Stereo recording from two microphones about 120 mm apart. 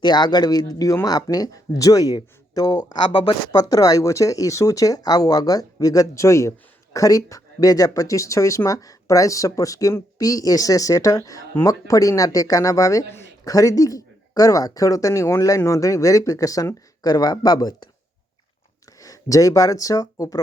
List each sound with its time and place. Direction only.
0.0 s speech: 35° left (ahead or behind)
18.9 s speech: 30° left (ahead or behind)